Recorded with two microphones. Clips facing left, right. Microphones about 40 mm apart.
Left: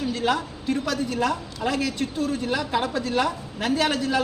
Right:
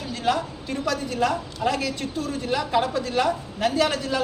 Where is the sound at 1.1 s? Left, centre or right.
Centre.